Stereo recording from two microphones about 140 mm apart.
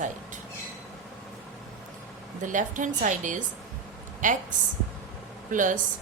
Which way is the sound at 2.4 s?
65° right (ahead or behind).